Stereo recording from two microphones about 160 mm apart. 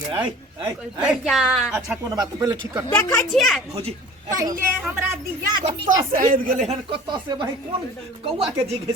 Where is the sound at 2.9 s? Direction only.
20° left (ahead or behind).